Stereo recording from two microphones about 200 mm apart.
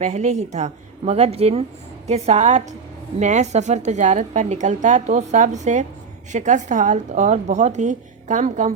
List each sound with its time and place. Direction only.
0.0 s a woman's voice: 35° right (ahead or behind)